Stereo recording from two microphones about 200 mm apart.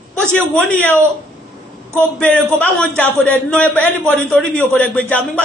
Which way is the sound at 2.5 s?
5° left (ahead or behind).